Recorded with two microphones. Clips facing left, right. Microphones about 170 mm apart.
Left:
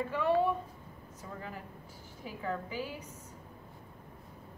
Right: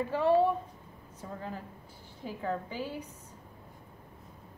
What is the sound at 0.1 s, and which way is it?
Speech, 30° right (ahead or behind).